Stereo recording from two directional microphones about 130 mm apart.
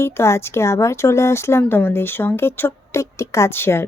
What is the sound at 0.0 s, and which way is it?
Speech, 20° left (ahead or behind).